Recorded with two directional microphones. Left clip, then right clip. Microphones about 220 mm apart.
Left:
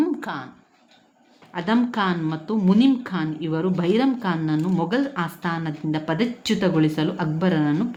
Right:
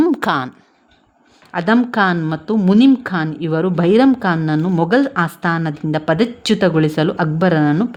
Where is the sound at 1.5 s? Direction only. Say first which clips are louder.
Right 7 dB; 45° right (ahead or behind).